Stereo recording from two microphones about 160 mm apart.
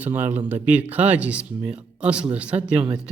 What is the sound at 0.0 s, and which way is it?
Speech, 10° right (ahead or behind).